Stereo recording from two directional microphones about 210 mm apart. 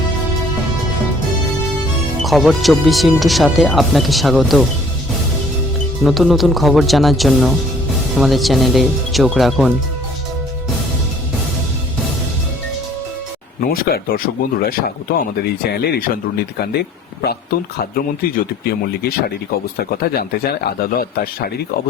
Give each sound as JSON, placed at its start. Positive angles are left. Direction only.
{"t": 2.2, "sound": "speech", "side_deg": 0}
{"t": 6.0, "sound": "speech", "side_deg": 0}
{"t": 13.6, "sound": "speech", "side_deg": 45}
{"t": 17.9, "sound": "speech", "side_deg": 45}